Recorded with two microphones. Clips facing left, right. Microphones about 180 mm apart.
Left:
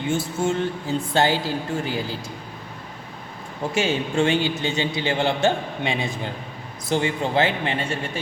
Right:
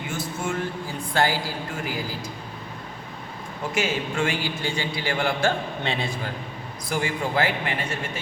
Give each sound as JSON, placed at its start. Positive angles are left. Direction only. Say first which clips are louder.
{"t": 0.0, "sound": "a man's voice", "louder": "left 6 dB", "side_deg": 25}
{"t": 3.6, "sound": "a man's voice", "louder": "left 3 dB", "side_deg": 30}
{"t": 6.9, "sound": "a man's voice", "louder": "left 4 dB", "side_deg": 25}